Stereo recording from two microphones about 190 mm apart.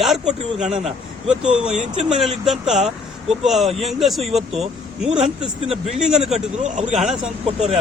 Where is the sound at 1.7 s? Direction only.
35° right (ahead or behind).